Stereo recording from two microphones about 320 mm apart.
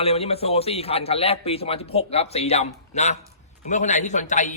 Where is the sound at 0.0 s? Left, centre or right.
Centre.